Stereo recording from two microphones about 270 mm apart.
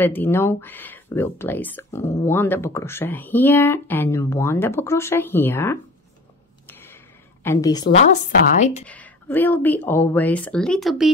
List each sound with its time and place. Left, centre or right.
0.0 s speech: centre
6.7 s a sound: centre
7.4 s speech: centre
8.0 s a woman's voice: left
8.8 s speech: centre